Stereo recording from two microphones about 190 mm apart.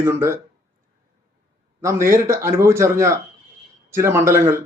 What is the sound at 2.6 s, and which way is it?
A man's voice, 15° right (ahead or behind).